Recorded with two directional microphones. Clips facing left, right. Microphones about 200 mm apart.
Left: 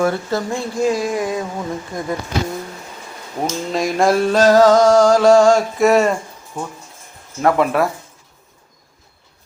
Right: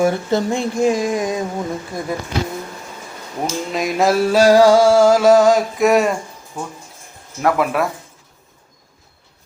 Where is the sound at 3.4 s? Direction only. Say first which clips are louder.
Left 1 dB; centre (ahead or behind).